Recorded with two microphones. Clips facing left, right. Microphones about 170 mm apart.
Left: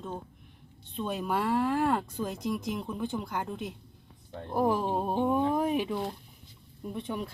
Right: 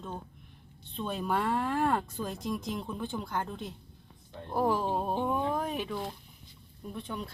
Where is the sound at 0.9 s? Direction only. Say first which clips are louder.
Left 1 dB; 5° left (ahead or behind).